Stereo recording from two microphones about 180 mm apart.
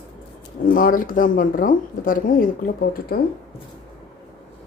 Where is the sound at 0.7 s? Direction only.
50° left (ahead or behind).